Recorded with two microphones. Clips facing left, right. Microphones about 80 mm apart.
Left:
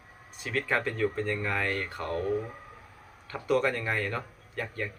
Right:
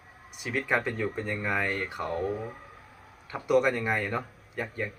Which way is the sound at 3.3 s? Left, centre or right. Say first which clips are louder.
Right 3 dB; centre.